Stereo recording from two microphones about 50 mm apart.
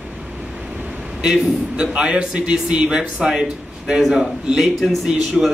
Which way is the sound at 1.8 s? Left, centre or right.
Right.